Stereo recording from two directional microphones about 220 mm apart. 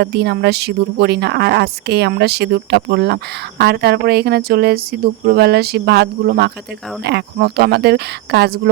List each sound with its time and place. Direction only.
0.0 s speech: 50° right (ahead or behind)